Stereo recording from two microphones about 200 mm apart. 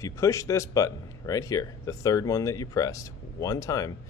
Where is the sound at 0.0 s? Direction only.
15° left (ahead or behind).